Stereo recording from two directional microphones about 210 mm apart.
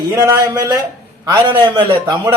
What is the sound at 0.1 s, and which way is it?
A man's voice, 15° right (ahead or behind).